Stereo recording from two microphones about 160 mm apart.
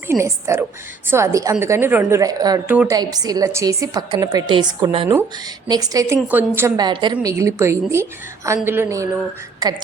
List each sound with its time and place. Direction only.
0.1 s a woman's voice: 15° right (ahead or behind)
6.1 s a woman's voice: 10° right (ahead or behind)
6.7 s a woman's voice: 30° right (ahead or behind)